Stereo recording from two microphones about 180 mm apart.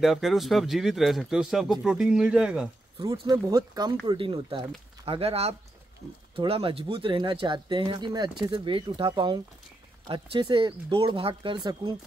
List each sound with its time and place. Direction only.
0.0 s speech: centre (ahead or behind)
3.0 s speech: 20° right (ahead or behind)